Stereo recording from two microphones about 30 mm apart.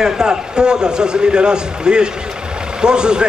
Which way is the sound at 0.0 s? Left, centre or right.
Right.